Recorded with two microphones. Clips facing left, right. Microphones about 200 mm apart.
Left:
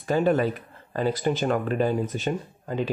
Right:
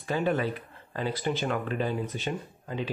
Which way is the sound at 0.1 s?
45° left (ahead or behind).